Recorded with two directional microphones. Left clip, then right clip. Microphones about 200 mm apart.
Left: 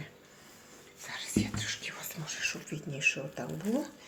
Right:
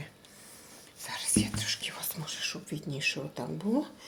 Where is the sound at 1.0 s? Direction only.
45° right (ahead or behind).